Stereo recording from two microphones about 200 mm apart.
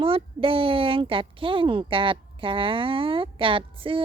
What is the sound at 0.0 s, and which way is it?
Speech, 25° right (ahead or behind).